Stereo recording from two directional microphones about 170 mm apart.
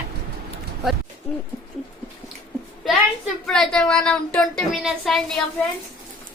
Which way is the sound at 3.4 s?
5° left (ahead or behind).